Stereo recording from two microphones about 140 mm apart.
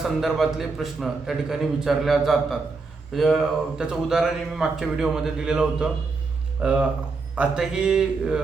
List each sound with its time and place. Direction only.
0.0 s speech: centre (ahead or behind)